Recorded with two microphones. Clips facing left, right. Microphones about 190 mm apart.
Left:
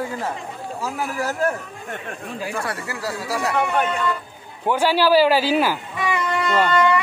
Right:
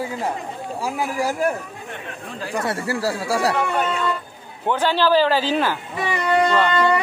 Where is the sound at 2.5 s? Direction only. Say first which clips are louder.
Right 4 dB; 25° right (ahead or behind).